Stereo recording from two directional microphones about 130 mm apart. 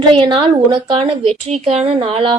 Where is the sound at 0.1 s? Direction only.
40° right (ahead or behind).